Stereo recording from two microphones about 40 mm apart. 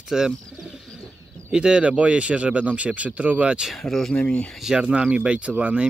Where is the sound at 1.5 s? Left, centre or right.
Centre.